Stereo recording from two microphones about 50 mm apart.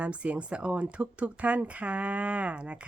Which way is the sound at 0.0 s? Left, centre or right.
Right.